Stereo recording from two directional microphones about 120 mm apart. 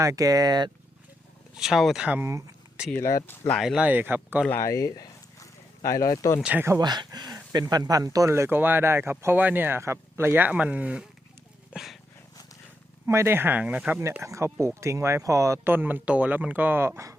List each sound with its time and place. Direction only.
0.0 s speech: 30° right (ahead or behind)
1.5 s speech: 5° right (ahead or behind)
2.0 s speech: 15° right (ahead or behind)
2.9 s speech: 20° left (ahead or behind)
3.6 s speech: 5° right (ahead or behind)
4.4 s speech: 20° left (ahead or behind)
6.4 s speech: 10° right (ahead or behind)
6.7 s speech: 35° right (ahead or behind); by 11.9 s centre (ahead or behind)
13.1 s speech: 20° right (ahead or behind)
14.0 s speech: 25° right (ahead or behind)